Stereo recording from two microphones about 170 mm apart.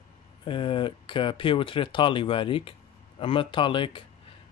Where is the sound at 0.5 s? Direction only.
30° left (ahead or behind).